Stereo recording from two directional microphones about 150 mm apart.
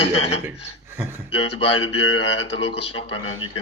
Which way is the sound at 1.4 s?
40° left (ahead or behind).